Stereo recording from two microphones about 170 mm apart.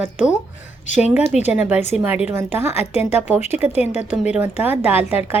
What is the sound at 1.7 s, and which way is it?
Speech, 40° left (ahead or behind).